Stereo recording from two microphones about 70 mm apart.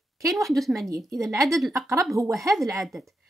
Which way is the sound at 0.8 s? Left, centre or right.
Right.